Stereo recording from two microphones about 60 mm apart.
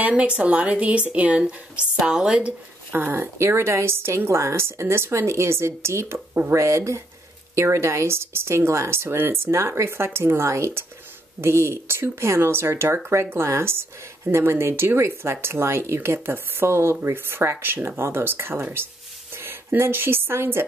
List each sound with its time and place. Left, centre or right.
0.0 s a woman's voice: right
2.0 s speech: centre
2.9 s speech: right